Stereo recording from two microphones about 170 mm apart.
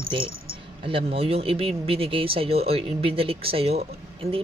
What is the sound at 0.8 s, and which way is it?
Speech, 35° right (ahead or behind).